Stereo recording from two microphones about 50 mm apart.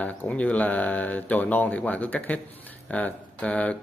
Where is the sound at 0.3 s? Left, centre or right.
Left.